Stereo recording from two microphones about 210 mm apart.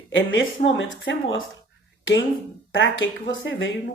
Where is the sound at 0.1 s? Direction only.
60° left (ahead or behind).